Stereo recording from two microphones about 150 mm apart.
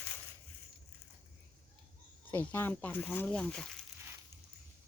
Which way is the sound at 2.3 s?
15° left (ahead or behind).